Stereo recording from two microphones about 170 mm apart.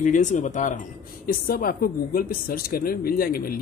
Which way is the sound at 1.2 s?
60° left (ahead or behind).